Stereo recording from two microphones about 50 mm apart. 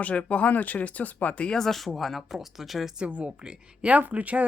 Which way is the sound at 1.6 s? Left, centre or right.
Centre.